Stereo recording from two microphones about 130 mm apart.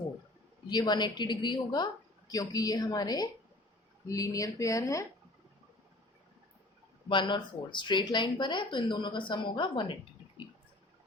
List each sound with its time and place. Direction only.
0.7 s speech: 35° left (ahead or behind)
7.1 s speech: 40° left (ahead or behind)